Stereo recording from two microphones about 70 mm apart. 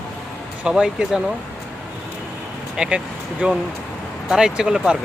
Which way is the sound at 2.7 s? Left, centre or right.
Centre.